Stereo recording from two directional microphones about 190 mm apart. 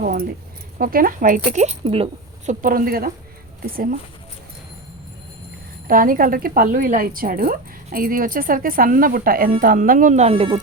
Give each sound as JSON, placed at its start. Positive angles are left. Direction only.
{"t": 0.0, "sound": "keys jangling", "side_deg": -50}
{"t": 0.8, "sound": "a woman's voice", "side_deg": -50}
{"t": 2.5, "sound": "a woman's voice", "side_deg": -45}
{"t": 5.9, "sound": "a woman's voice", "side_deg": -45}